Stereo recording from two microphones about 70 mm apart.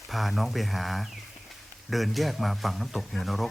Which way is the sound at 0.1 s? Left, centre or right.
Centre.